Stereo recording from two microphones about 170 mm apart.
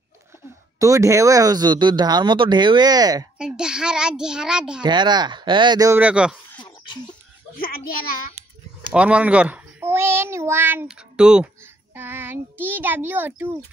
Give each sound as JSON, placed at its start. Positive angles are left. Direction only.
{"t": 0.7, "sound": "speech", "side_deg": -20}
{"t": 3.3, "sound": "a child's voice", "side_deg": -5}
{"t": 4.8, "sound": "speech", "side_deg": -25}
{"t": 5.9, "sound": "a child's voice", "side_deg": -5}
{"t": 6.6, "sound": "a sound", "side_deg": 25}
{"t": 7.5, "sound": "a child's voice", "side_deg": 60}
{"t": 8.9, "sound": "a child's voice", "side_deg": -5}